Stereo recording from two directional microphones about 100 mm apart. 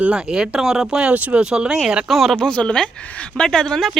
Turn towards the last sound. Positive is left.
turn(degrees=5)  # may be behind; listen again after turning